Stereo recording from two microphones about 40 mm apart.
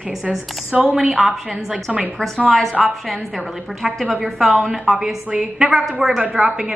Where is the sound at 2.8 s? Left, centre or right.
Centre.